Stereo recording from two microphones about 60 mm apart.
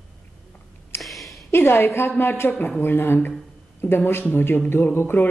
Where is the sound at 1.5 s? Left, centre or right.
Left.